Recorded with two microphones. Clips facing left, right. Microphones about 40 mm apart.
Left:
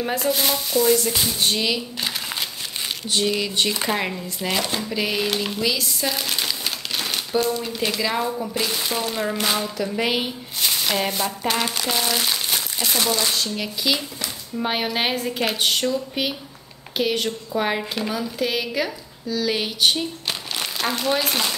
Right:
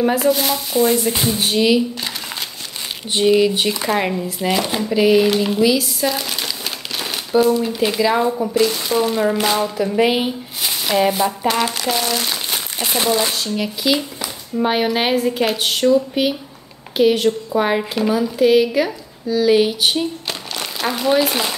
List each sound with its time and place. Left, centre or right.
0.0 s speech: centre
0.7 s stir: right
1.4 s speech: centre
3.1 s speech: centre
3.7 s speech: centre
8.5 s speech: centre
12.7 s stir: right
13.3 s speech: centre